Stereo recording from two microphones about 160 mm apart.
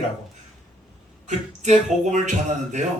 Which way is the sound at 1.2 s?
50° right (ahead or behind).